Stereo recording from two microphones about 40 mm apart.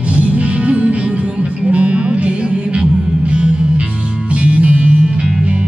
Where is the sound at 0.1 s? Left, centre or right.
Right.